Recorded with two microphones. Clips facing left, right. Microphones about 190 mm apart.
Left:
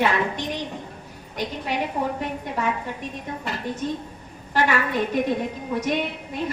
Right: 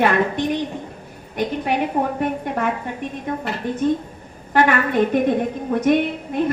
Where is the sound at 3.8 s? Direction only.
55° right (ahead or behind).